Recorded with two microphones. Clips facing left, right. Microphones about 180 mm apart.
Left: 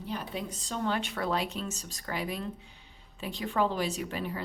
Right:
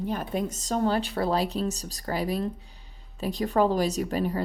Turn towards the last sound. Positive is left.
turn(degrees=-40)  # may be behind; listen again after turning